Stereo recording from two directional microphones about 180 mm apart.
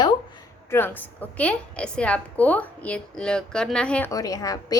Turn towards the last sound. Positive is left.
turn(degrees=20)  # may be behind; listen again after turning